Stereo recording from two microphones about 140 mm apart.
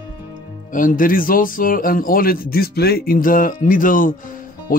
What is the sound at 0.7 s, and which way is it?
A man's voice, 75° left (ahead or behind).